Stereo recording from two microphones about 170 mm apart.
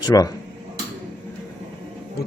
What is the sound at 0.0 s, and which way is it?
Speech, 25° left (ahead or behind).